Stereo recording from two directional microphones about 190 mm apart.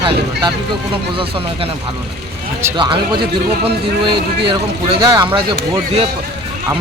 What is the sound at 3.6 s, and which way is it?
Speech, 25° right (ahead or behind).